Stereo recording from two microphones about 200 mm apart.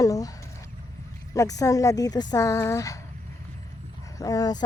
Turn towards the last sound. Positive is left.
turn(degrees=20)  # may be behind; listen again after turning